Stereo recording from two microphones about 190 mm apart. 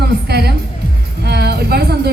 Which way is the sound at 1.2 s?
60° right (ahead or behind).